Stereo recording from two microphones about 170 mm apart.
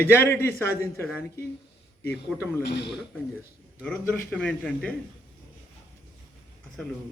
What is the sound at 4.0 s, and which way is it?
Speech, 15° left (ahead or behind).